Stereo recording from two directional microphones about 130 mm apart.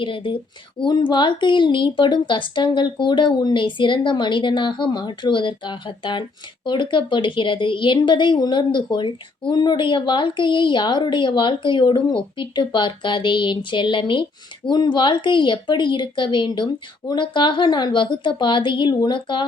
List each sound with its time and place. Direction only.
0.0 s speech: 40° left (ahead or behind)